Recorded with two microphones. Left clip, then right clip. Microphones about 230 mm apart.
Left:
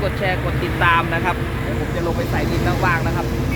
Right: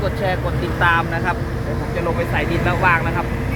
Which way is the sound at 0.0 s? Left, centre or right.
Centre.